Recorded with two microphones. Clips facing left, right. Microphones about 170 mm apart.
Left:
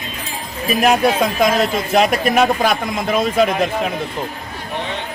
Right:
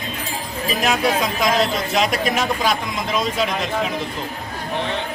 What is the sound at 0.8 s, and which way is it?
Speech, 55° left (ahead or behind).